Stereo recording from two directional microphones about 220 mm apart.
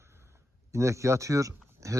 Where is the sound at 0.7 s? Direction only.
15° right (ahead or behind).